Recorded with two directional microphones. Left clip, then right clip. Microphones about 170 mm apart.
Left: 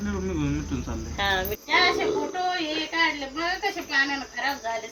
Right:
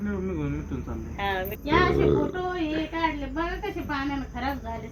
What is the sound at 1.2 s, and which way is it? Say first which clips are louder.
Speech: left 4 dB; 90° left.